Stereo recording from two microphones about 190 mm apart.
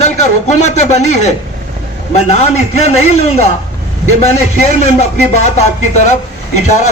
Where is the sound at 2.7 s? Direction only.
35° left (ahead or behind).